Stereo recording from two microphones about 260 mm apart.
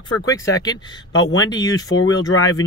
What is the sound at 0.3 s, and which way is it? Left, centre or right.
Speech, centre.